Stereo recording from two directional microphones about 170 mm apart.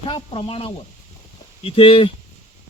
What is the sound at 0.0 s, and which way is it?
Speech, 30° left (ahead or behind).